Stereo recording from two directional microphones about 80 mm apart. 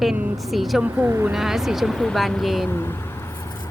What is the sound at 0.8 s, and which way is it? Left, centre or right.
Speech, right.